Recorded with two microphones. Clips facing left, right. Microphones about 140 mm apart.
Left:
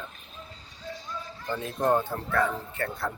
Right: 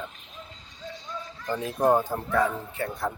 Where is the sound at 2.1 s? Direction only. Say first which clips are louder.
Right 2 dB; 15° right (ahead or behind).